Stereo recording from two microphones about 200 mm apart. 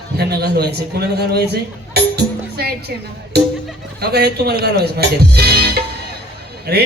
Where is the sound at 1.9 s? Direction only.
55° right (ahead or behind).